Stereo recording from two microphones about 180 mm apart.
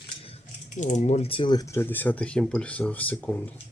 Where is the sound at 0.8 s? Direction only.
40° left (ahead or behind); by 3.3 s 10° left (ahead or behind).